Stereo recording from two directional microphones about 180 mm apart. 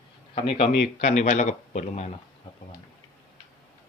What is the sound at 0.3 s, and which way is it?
A man's voice, 30° left (ahead or behind).